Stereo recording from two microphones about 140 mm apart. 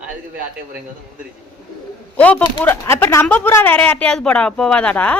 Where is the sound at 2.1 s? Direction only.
10° left (ahead or behind).